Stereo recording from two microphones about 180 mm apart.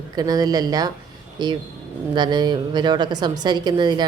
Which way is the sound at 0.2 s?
20° right (ahead or behind).